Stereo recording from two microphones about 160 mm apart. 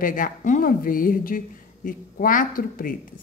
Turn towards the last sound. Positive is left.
turn(degrees=60)  # may be behind; listen again after turning